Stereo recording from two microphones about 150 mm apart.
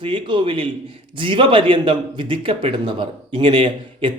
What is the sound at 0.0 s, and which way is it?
Speech, 30° right (ahead or behind).